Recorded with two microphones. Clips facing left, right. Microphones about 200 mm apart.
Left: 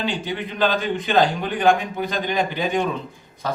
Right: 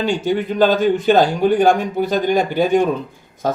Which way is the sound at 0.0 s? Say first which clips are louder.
Right 7 dB; 45° right (ahead or behind).